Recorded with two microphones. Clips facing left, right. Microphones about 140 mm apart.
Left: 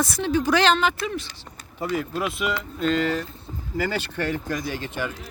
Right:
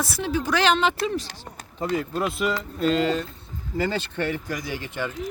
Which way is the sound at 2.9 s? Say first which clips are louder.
Even; 25° right (ahead or behind).